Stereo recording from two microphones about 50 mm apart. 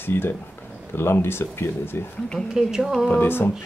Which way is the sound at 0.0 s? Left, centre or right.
Left.